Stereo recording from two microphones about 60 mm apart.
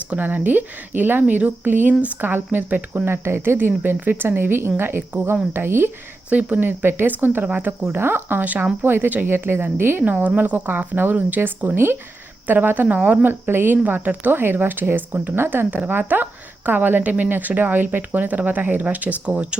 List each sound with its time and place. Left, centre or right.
0.2 s a woman's voice: right
7.9 s a woman's voice: right
13.5 s a woman's voice: right; by 19.5 s centre